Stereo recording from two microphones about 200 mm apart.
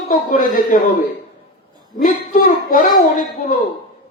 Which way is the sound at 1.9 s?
40° left (ahead or behind).